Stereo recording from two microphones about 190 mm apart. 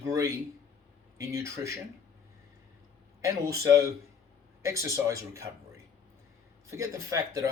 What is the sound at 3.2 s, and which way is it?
Speech, 15° right (ahead or behind).